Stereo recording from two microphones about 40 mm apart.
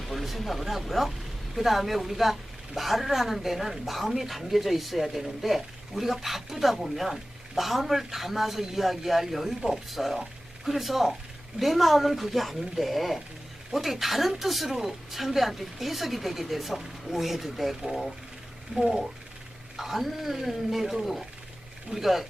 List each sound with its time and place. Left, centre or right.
0.0 s a woman's voice: centre